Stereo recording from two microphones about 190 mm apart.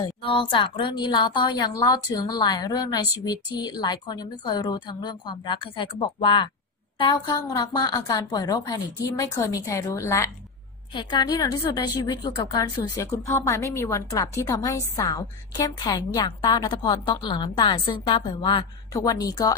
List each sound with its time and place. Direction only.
0.0 s a woman's voice: 25° left (ahead or behind)